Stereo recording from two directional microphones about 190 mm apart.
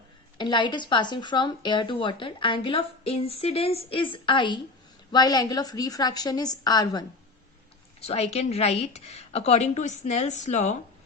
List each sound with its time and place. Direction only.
0.3 s speech: 25° left (ahead or behind)
8.0 s a woman's voice: 35° left (ahead or behind)